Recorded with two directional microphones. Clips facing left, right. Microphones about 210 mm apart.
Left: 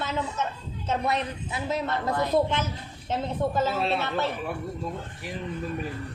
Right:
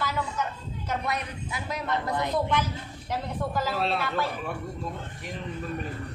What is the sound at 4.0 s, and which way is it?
Speech, 25° left (ahead or behind).